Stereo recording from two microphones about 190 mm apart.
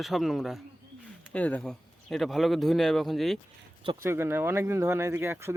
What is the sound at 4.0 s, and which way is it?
Speech, 15° right (ahead or behind).